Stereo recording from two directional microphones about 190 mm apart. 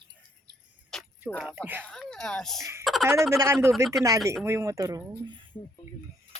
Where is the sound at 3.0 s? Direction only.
15° right (ahead or behind).